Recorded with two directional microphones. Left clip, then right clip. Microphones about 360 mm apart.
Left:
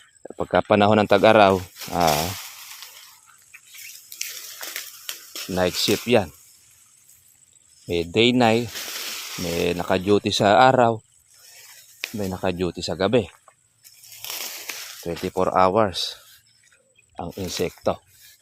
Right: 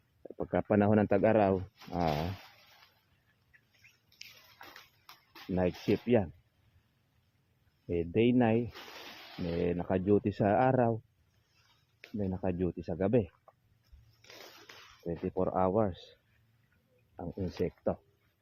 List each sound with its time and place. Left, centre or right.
0.2 s speech: left
5.5 s speech: left
7.9 s speech: left
15.0 s speech: left
17.2 s speech: left